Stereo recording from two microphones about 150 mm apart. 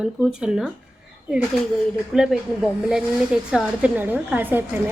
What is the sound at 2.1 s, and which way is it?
A woman's voice, 5° right (ahead or behind).